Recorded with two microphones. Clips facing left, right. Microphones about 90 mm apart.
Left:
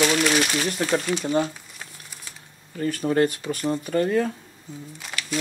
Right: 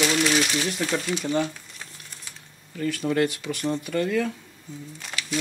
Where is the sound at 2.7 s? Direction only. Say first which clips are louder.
Left 2 dB; 40° left (ahead or behind).